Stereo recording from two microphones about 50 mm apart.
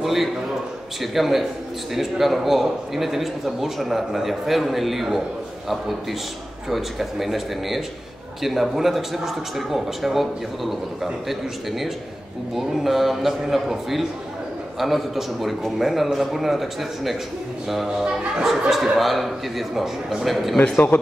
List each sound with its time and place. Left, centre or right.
0.0 s a sound: centre
1.1 s a man's voice: centre
6.7 s a man's voice: centre
12.5 s a man's voice: centre
20.9 s speech: left